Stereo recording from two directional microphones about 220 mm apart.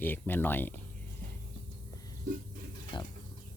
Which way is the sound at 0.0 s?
10° left (ahead or behind).